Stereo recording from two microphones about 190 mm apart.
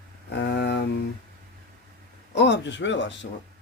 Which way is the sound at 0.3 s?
60° left (ahead or behind).